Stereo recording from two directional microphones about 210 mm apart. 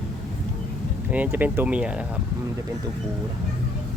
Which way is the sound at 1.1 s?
10° right (ahead or behind).